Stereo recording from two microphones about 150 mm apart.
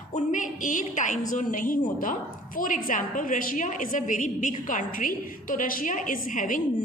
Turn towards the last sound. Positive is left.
turn(degrees=60)  # may be behind; listen again after turning